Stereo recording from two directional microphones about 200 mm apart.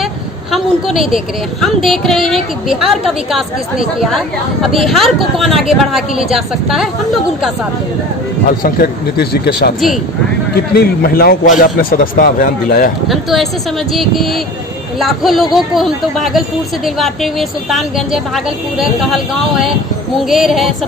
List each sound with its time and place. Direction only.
0.0 s a woman's voice: centre (ahead or behind)
4.0 s a woman's voice: centre (ahead or behind)
8.5 s speech: 50° left (ahead or behind)
13.1 s a woman's voice: centre (ahead or behind)